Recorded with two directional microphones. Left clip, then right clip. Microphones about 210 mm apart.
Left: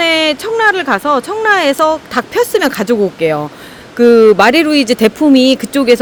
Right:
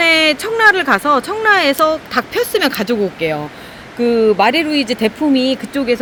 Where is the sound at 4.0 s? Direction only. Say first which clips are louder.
Left 6 dB; 45° left (ahead or behind).